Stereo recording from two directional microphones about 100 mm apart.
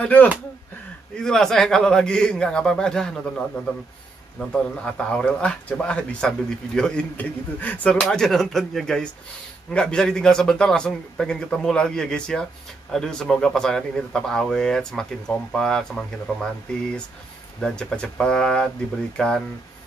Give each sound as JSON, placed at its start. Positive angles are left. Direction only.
{"t": 0.0, "sound": "speech", "side_deg": 15}
{"t": 1.1, "sound": "a man's voice", "side_deg": 5}
{"t": 4.4, "sound": "a man's voice", "side_deg": 10}
{"t": 17.6, "sound": "speech", "side_deg": 5}